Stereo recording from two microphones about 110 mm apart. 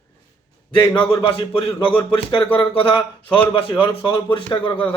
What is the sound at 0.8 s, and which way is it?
Speech, 35° left (ahead or behind).